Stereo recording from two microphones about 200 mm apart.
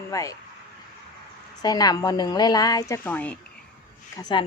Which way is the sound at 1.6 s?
20° left (ahead or behind).